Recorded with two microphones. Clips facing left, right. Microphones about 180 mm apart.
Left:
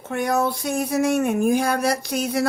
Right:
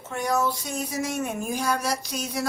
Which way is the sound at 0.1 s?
60° left (ahead or behind).